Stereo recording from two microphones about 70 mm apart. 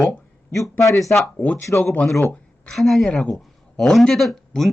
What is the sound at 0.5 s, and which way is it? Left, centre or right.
Speech, left.